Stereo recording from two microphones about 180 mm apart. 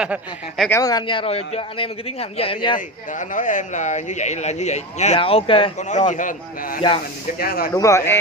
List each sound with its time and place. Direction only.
0.0 s speech: 5° right (ahead or behind)
0.7 s speech: 20° left (ahead or behind)
3.1 s speech: 45° left (ahead or behind)
5.9 s a man's voice: 45° left (ahead or behind)
7.7 s a man's voice: 15° left (ahead or behind)